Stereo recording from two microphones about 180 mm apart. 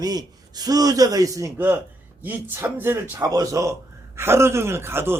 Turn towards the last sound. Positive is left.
turn(degrees=-15)  # may be behind; listen again after turning